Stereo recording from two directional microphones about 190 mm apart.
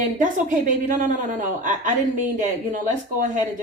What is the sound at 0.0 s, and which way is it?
A woman's voice, 45° right (ahead or behind).